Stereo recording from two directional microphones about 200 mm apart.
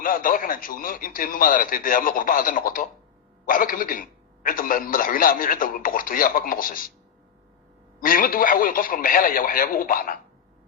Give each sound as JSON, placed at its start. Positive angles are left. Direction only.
{"t": 0.0, "sound": "speech", "side_deg": 45}
{"t": 8.0, "sound": "speech", "side_deg": 45}